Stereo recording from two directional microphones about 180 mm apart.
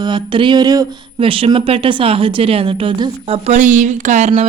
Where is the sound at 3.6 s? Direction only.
45° right (ahead or behind).